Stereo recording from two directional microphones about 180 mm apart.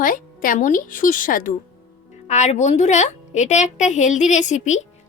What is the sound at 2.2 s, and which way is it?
A woman's voice, 40° left (ahead or behind).